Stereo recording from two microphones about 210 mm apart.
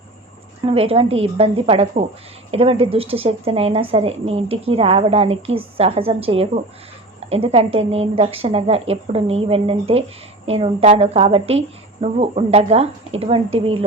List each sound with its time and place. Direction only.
0.6 s a woman's voice: 25° right (ahead or behind)